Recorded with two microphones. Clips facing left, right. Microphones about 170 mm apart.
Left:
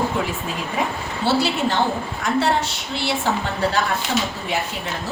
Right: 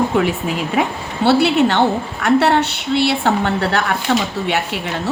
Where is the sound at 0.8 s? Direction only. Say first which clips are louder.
Right 4 dB; 65° right (ahead or behind).